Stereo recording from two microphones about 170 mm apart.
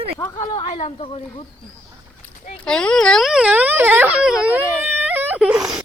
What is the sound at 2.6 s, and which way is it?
Speech, 5° left (ahead or behind).